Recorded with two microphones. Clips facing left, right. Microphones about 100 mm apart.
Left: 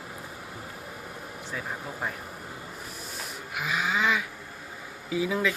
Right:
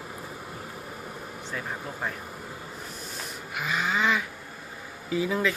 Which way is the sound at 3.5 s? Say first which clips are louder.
Even; centre (ahead or behind).